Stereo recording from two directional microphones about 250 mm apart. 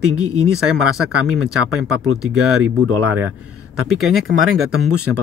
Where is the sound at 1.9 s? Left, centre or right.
Right.